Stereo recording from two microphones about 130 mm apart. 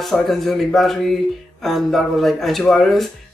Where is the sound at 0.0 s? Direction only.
Centre (ahead or behind).